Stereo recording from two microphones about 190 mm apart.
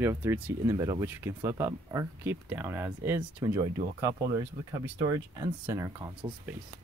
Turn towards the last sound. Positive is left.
turn(degrees=-15)  # may be behind; listen again after turning